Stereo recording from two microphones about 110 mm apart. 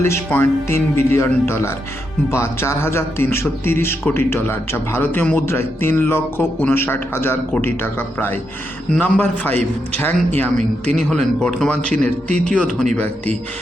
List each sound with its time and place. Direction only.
0.0 s a man's voice: 20° left (ahead or behind)